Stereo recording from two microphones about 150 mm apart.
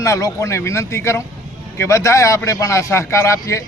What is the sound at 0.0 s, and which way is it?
Speech, 20° left (ahead or behind).